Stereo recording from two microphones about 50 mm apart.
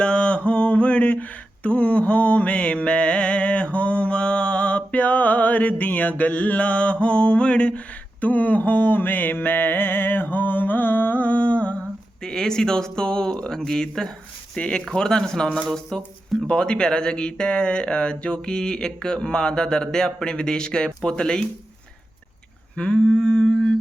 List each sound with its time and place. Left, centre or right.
0.0 s a sound: left
8.2 s mantra: left
12.2 s speech: centre
16.5 s speech: centre
22.7 s speech: left